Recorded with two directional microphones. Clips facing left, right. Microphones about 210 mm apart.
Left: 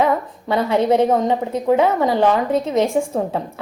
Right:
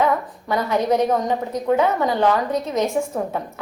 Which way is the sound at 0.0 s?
25° left (ahead or behind).